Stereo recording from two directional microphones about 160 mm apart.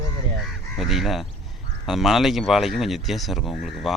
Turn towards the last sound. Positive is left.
turn(degrees=0)  # may be behind; listen again after turning